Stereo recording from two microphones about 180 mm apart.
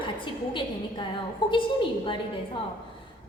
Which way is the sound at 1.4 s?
25° left (ahead or behind).